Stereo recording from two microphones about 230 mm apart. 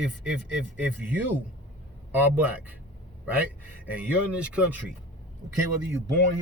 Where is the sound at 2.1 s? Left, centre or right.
Centre.